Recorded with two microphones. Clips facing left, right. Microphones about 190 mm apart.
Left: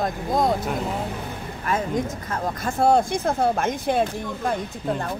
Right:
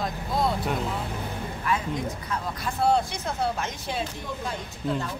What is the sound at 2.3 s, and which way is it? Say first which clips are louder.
Speech: left 4 dB; 45° left (ahead or behind).